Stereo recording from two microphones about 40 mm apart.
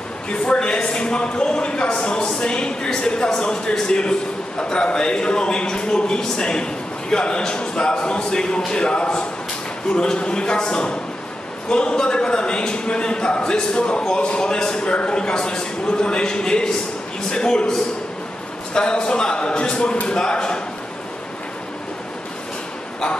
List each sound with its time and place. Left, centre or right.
0.3 s a man's voice: left
18.7 s a man's voice: left